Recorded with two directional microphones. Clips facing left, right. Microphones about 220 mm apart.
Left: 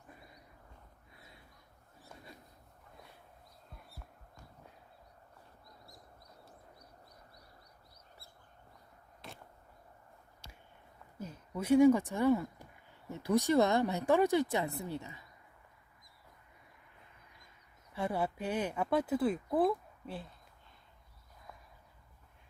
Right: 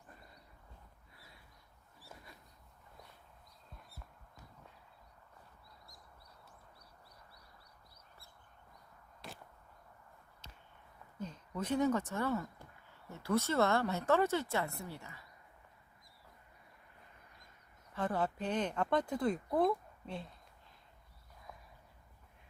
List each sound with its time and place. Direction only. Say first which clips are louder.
11.2 s speech: left 1 dB; 10° left (ahead or behind)
17.9 s speech: left 1 dB; 10° left (ahead or behind)